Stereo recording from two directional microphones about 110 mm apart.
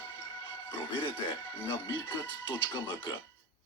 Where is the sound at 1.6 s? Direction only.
20° left (ahead or behind).